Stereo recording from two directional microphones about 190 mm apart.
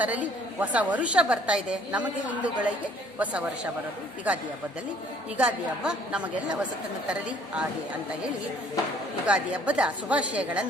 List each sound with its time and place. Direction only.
0.0 s a woman's voice: 10° right (ahead or behind)
9.2 s a woman's voice: 5° right (ahead or behind)